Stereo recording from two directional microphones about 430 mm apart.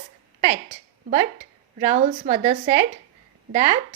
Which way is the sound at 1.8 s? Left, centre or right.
Centre.